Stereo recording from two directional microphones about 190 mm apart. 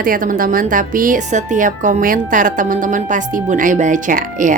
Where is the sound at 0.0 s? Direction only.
45° right (ahead or behind).